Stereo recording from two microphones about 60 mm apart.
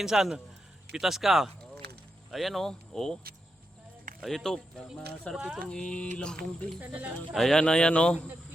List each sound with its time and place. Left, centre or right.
0.0 s a man's voice: centre
4.2 s mantra: centre
6.7 s speech: right
7.3 s speech: centre
7.6 s mantra: centre